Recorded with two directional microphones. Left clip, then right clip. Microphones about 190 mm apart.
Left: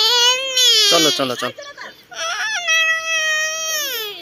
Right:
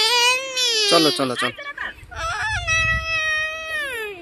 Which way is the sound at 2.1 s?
45° right (ahead or behind).